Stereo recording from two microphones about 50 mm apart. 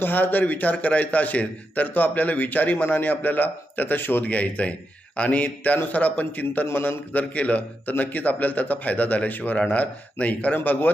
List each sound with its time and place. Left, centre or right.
0.0 s a man's voice: left
4.2 s a man's voice: left
6.7 s a man's voice: left
7.1 s a man's voice: left
10.6 s a man's voice: left